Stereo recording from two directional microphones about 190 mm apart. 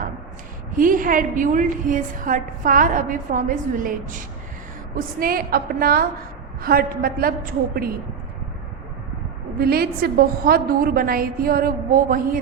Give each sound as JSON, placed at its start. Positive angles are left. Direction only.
{"t": 0.8, "sound": "a woman's voice", "side_deg": -45}
{"t": 5.2, "sound": "a woman's voice", "side_deg": -50}
{"t": 9.6, "sound": "a woman's voice", "side_deg": -55}